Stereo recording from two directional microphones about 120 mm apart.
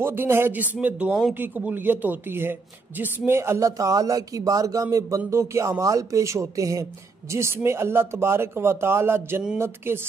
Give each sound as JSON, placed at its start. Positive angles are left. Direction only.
{"t": 0.0, "sound": "speech", "side_deg": -20}